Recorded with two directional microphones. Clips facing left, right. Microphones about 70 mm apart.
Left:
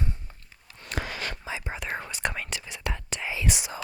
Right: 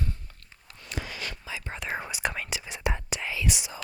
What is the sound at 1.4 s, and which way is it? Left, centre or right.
Whispering, left.